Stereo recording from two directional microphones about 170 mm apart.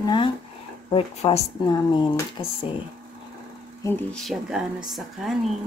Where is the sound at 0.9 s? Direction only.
35° left (ahead or behind).